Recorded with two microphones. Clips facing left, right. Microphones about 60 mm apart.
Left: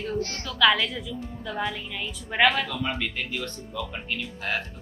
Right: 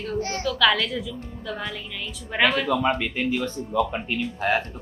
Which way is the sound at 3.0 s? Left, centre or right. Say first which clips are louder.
Right 6 dB; centre.